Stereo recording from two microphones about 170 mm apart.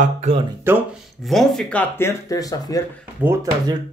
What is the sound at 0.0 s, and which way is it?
Speech, 40° right (ahead or behind).